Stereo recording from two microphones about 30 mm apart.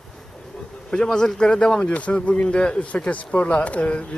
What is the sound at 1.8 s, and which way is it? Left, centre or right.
Speech, left.